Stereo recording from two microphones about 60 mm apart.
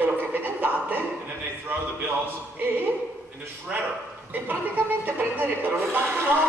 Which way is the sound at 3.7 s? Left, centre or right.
Centre.